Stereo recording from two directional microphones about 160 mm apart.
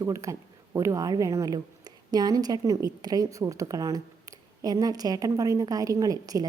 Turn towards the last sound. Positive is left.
turn(degrees=-25)  # may be behind; listen again after turning